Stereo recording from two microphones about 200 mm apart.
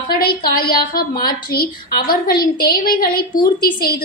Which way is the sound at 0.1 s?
50° left (ahead or behind).